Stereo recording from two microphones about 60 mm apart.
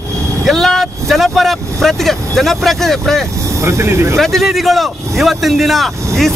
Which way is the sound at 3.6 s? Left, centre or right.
Right.